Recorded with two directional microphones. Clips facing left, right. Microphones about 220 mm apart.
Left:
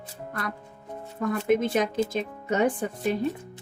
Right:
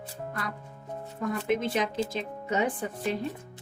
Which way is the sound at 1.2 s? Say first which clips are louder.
Left 5 dB; 50° left (ahead or behind).